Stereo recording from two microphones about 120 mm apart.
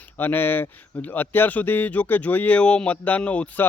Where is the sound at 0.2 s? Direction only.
15° left (ahead or behind).